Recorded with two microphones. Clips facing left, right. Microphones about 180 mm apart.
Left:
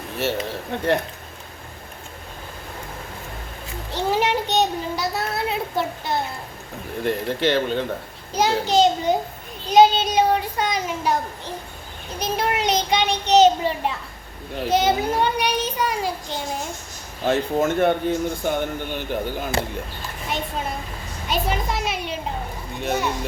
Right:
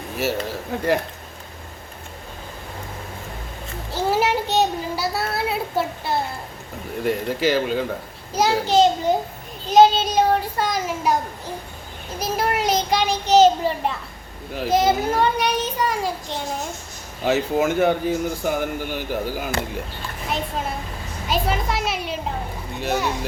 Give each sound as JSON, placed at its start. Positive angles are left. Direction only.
{"t": 0.2, "sound": "a child's voice", "side_deg": 0}
{"t": 3.9, "sound": "a child's voice", "side_deg": -5}
{"t": 10.6, "sound": "a child's voice", "side_deg": -5}
{"t": 21.2, "sound": "children playing", "side_deg": 0}
{"t": 22.8, "sound": "a child's voice", "side_deg": 0}